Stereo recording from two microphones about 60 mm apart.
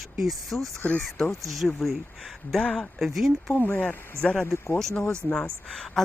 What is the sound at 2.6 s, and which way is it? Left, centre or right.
Speech, centre.